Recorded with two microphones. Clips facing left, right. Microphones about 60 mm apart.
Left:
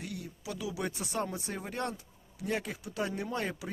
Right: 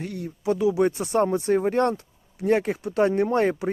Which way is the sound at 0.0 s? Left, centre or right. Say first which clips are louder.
Right 12 dB; right.